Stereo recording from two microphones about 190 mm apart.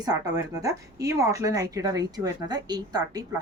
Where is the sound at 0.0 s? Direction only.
20° right (ahead or behind).